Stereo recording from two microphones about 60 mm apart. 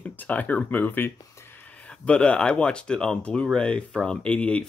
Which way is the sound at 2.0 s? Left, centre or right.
Centre.